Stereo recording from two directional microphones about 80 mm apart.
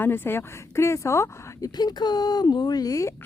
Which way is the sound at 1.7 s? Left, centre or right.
Left.